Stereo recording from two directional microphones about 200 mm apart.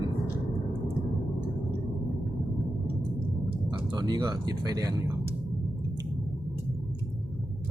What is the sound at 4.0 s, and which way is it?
Speech, 20° right (ahead or behind).